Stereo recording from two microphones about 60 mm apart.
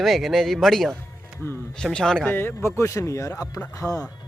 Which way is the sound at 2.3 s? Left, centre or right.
Left.